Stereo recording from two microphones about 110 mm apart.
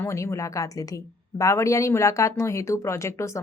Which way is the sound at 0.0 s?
25° left (ahead or behind).